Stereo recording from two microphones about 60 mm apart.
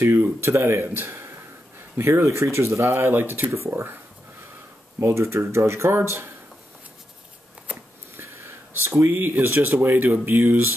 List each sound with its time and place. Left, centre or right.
0.2 s speech: right
3.6 s speech: right
5.0 s speech: right
8.8 s speech: right
9.1 s speech: right